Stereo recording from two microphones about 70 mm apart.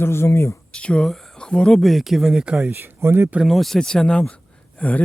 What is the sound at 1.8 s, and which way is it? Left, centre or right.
Speech, centre.